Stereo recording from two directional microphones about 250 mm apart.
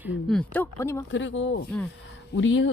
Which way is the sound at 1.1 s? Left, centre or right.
Left.